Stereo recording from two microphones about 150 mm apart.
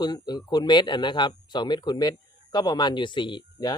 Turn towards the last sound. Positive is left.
turn(degrees=30)  # may be behind; listen again after turning